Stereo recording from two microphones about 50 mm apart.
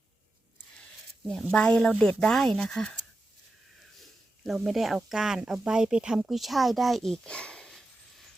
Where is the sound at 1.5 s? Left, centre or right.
Centre.